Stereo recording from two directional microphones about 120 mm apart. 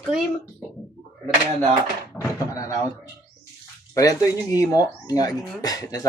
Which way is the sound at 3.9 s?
30° left (ahead or behind).